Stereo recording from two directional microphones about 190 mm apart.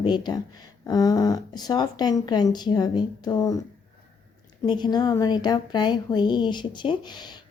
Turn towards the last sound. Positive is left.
turn(degrees=25)  # may be behind; listen again after turning